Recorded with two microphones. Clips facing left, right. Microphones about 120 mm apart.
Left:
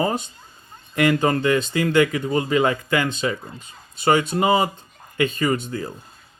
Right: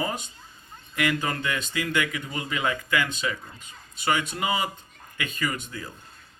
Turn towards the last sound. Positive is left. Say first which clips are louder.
# left 8 dB
turn(degrees=30)  # may be behind; listen again after turning